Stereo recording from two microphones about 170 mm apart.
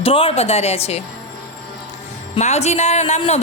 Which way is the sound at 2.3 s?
40° left (ahead or behind).